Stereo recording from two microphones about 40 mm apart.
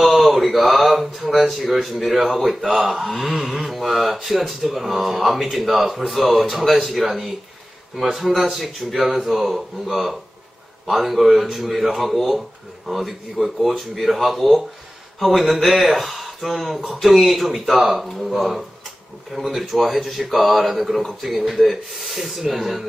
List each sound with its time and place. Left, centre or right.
0.1 s speech: centre
2.7 s speech: centre
3.0 s speech: centre